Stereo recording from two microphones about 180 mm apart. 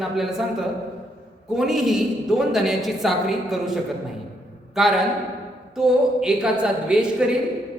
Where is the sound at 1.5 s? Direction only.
Centre (ahead or behind).